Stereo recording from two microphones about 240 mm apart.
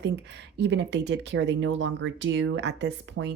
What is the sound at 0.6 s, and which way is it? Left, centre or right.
Speech, right.